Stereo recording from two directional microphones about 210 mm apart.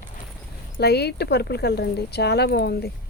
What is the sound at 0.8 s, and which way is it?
Speech, 50° left (ahead or behind).